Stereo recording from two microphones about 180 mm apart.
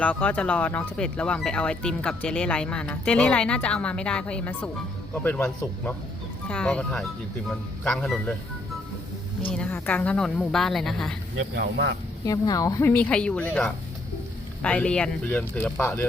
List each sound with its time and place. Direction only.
0.0 s a woman's voice: 10° left (ahead or behind)
9.5 s a woman's voice: 5° left (ahead or behind)
11.5 s speech: 75° right (ahead or behind)
12.2 s speech: 20° left (ahead or behind)